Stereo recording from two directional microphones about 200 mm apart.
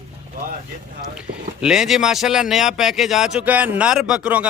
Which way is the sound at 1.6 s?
5° right (ahead or behind).